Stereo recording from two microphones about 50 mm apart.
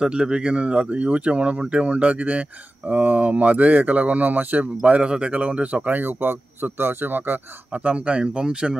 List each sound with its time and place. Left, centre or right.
0.0 s speech: centre; by 4.6 s right
4.8 s speech: right